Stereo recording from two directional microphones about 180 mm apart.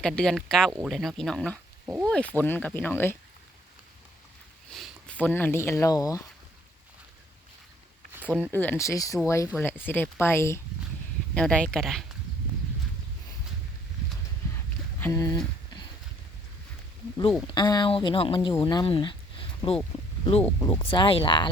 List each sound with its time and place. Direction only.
0.0 s speech: 5° left (ahead or behind)
4.7 s speech: 5° left (ahead or behind); by 6.2 s 20° left (ahead or behind)
8.1 s speech: 10° right (ahead or behind)
8.5 s speech: 10° left (ahead or behind)
15.0 s speech: 20° left (ahead or behind)
17.4 s speech: 25° left (ahead or behind)
19.9 s a sound: 30° left (ahead or behind)
20.7 s speech: 25° left (ahead or behind)